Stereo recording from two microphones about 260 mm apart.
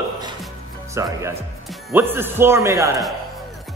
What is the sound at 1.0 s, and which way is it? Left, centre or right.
A man's voice, centre.